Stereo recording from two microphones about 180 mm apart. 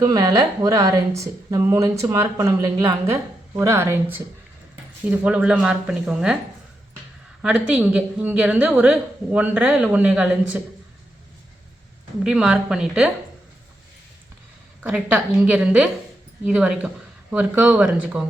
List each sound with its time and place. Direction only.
0.0 s a woman's voice: 20° right (ahead or behind); by 6.3 s 5° right (ahead or behind)
7.4 s a woman's voice: 5° right (ahead or behind)
12.2 s speech: 5° right (ahead or behind)
14.8 s a woman's voice: 5° right (ahead or behind)